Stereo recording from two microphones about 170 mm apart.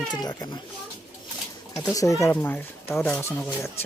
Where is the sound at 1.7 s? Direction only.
20° left (ahead or behind).